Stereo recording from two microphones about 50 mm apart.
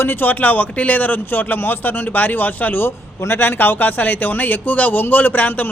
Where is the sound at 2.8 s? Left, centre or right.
Left.